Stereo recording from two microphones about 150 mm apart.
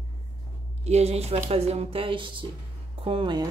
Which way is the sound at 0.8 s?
45° right (ahead or behind).